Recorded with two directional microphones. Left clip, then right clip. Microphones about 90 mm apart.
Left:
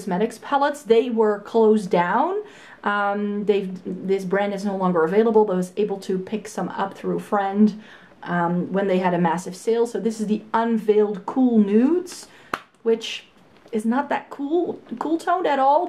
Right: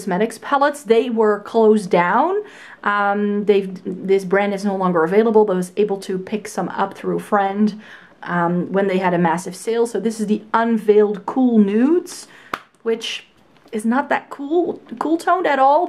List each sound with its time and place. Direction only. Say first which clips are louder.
0.0 s speech: right 4 dB; 35° right (ahead or behind)